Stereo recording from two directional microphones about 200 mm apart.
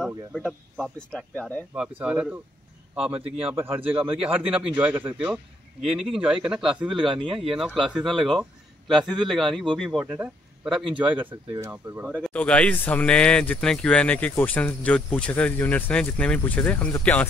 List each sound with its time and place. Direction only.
0.0 s a man's voice: centre (ahead or behind)
1.8 s a man's voice: 5° right (ahead or behind)
11.2 s a man's voice: 20° right (ahead or behind)
12.1 s speech: 5° left (ahead or behind)